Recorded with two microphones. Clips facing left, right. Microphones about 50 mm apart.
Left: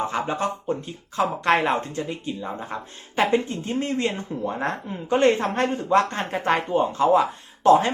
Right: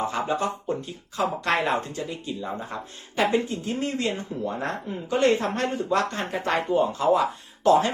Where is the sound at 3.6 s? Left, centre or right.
Left.